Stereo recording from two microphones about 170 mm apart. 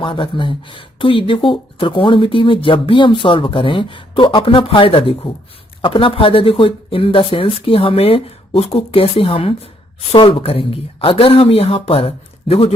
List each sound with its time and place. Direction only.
0.0 s speech: 30° left (ahead or behind)